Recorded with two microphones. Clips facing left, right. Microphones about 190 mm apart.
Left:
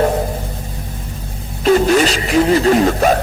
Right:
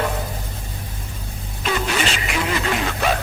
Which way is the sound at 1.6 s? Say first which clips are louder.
Left 11 dB; 40° left (ahead or behind).